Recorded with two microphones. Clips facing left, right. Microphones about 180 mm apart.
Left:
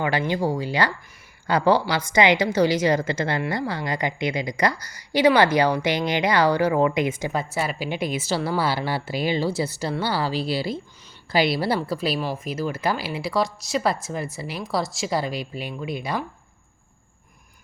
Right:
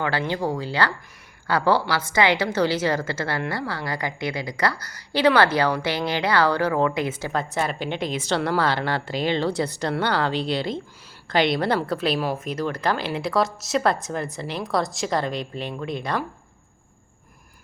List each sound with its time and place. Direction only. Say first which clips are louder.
0.0 s a woman's voice: left 2 dB; 15° left (ahead or behind)